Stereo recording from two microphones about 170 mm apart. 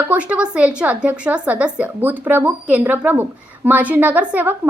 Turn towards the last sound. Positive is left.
turn(degrees=-10)  # may be behind; listen again after turning